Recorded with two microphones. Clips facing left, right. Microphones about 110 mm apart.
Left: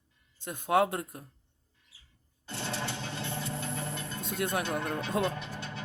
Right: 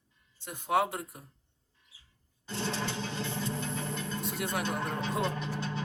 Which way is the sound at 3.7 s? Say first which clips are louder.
Right 1 dB; 20° right (ahead or behind).